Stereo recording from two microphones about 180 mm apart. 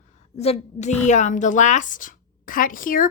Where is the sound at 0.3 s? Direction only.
35° left (ahead or behind).